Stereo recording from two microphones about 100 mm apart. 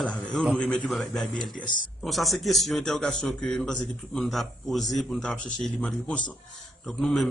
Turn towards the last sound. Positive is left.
turn(degrees=5)  # may be behind; listen again after turning